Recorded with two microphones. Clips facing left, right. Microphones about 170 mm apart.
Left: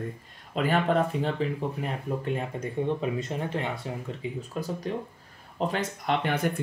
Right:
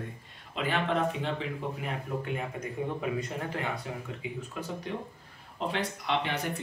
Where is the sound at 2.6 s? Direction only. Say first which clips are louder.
Left 5 dB; 25° left (ahead or behind).